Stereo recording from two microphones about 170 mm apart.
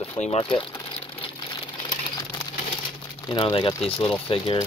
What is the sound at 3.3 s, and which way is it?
Speech, 30° left (ahead or behind).